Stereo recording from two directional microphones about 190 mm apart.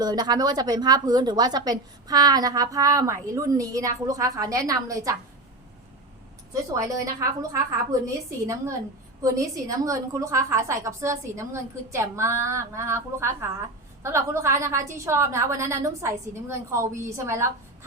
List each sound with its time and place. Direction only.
0.0 s a woman's voice: 20° right (ahead or behind)
6.5 s a woman's voice: 15° right (ahead or behind)
9.2 s a woman's voice: 15° right (ahead or behind)